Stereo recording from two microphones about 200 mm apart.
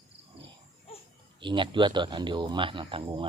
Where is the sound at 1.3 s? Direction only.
25° right (ahead or behind).